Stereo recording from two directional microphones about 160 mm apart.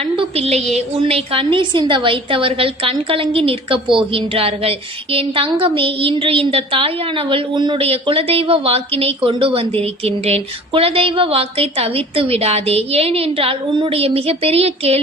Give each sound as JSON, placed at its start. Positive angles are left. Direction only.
{"t": 0.0, "sound": "a woman's voice", "side_deg": -35}